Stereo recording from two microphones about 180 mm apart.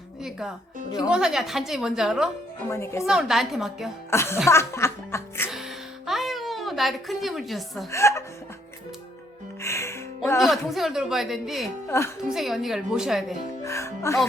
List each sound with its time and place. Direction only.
0.2 s music: 5° right (ahead or behind)
0.9 s a woman's voice: 5° right (ahead or behind)
2.6 s speech: 15° left (ahead or behind)
3.0 s a woman's voice: 5° right (ahead or behind)
4.1 s speech: 15° left (ahead or behind)
6.1 s a sound: centre (ahead or behind)
7.9 s speech: 15° left (ahead or behind)
9.6 s music: 15° left (ahead or behind)
10.7 s a woman's voice: centre (ahead or behind)
11.9 s speech: 15° left (ahead or behind)
12.3 s a woman's voice: centre (ahead or behind)
13.7 s music: 15° left (ahead or behind)